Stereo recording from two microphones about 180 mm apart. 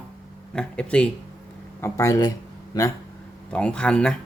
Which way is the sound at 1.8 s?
15° left (ahead or behind).